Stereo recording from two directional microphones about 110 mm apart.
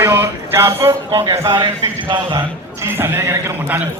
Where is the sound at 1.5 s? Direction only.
45° right (ahead or behind).